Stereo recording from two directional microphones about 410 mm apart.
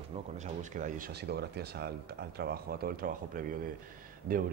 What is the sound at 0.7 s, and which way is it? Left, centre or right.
Speech, centre.